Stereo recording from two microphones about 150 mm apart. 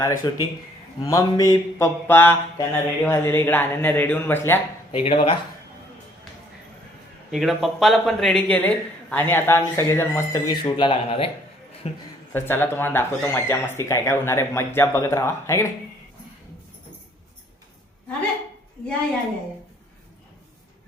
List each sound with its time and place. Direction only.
0.2 s speech: 30° left (ahead or behind)
1.0 s mantra: 20° left (ahead or behind)
4.9 s speech: 40° left (ahead or behind)
7.3 s mantra: centre (ahead or behind); by 10.7 s 25° left (ahead or behind)
10.8 s speech: 35° left (ahead or behind)
11.9 s a man's voice: 50° left (ahead or behind)
12.3 s mantra: 15° left (ahead or behind)